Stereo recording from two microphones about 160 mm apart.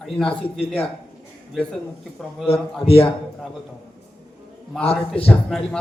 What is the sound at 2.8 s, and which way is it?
Speech, 40° left (ahead or behind).